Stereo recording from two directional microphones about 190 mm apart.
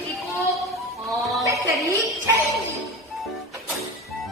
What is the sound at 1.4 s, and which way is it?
Speech, 15° right (ahead or behind).